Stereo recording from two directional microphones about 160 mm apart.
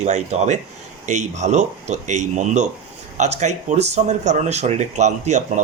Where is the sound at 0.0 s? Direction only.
45° right (ahead or behind).